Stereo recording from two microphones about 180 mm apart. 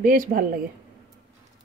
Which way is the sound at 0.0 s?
50° right (ahead or behind).